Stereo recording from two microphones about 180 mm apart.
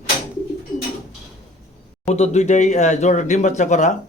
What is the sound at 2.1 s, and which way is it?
Speech, 40° left (ahead or behind).